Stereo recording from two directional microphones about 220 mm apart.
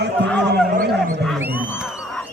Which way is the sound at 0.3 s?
5° left (ahead or behind).